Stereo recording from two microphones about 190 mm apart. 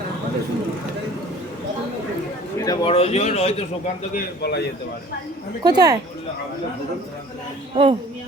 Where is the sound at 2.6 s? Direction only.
25° left (ahead or behind).